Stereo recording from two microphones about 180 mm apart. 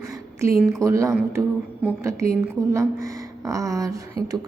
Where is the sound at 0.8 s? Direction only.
15° right (ahead or behind).